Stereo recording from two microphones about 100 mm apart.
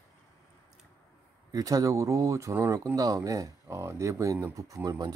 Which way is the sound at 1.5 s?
35° right (ahead or behind).